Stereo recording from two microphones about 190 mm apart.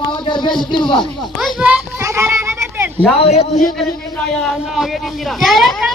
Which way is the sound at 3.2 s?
35° left (ahead or behind).